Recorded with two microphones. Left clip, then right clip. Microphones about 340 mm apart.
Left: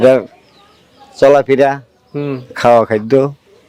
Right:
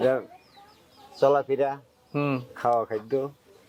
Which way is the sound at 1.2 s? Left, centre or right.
Left.